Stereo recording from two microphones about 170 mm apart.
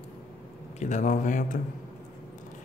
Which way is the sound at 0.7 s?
45° left (ahead or behind).